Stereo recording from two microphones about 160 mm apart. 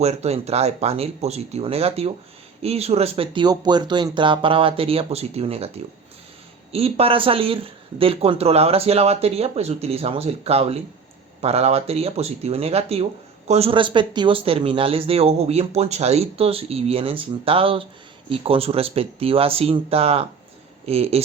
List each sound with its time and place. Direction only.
0.0 s speech: 40° right (ahead or behind)